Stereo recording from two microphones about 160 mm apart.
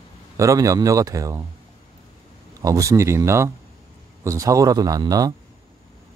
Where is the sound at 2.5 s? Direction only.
20° right (ahead or behind).